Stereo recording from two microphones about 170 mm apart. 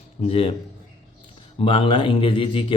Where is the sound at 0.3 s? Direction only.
35° left (ahead or behind).